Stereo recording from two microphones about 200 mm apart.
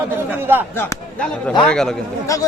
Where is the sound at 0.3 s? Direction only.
10° right (ahead or behind).